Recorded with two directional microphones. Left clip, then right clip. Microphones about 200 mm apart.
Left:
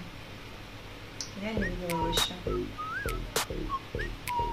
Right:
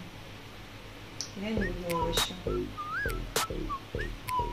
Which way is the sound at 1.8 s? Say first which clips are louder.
Left 1 dB; centre (ahead or behind).